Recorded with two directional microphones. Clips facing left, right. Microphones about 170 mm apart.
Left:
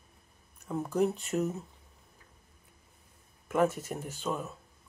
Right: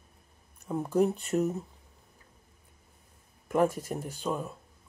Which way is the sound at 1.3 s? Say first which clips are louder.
Right 4 dB; 25° right (ahead or behind).